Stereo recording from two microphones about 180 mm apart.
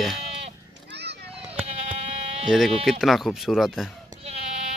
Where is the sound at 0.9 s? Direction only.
70° right (ahead or behind).